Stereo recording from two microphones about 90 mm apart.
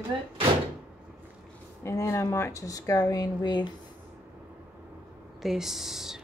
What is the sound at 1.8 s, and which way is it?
Speech, 35° left (ahead or behind).